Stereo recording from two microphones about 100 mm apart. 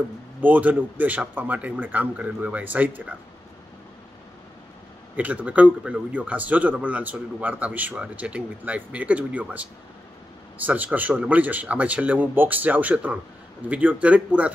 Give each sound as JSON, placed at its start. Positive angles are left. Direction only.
{"t": 0.4, "sound": "a man's voice", "side_deg": -15}
{"t": 5.1, "sound": "a man's voice", "side_deg": -15}